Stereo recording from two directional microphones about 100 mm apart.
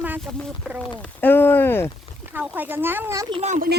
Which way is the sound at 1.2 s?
20° left (ahead or behind).